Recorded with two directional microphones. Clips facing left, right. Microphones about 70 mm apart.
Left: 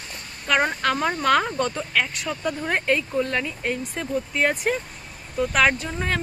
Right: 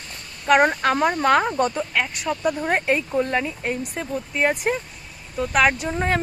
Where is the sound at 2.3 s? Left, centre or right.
Centre.